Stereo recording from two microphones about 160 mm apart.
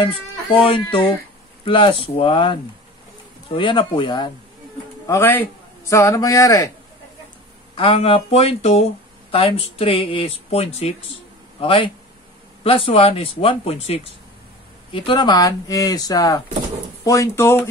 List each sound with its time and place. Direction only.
0.6 s speech: 35° left (ahead or behind)
5.0 s a man's voice: 15° left (ahead or behind)
7.7 s speech: 35° left (ahead or behind); by 17.6 s 20° left (ahead or behind)